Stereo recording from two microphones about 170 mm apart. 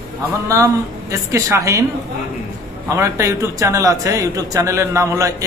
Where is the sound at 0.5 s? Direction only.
15° right (ahead or behind).